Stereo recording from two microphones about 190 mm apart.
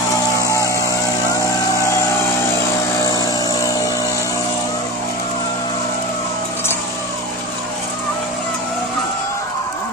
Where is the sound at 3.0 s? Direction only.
20° left (ahead or behind).